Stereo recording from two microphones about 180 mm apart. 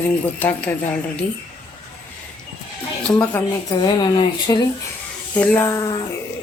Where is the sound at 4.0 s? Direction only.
25° left (ahead or behind).